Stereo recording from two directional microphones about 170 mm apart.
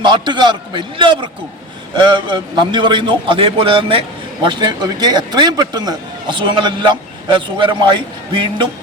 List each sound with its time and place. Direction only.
0.0 s a man's voice: 25° right (ahead or behind)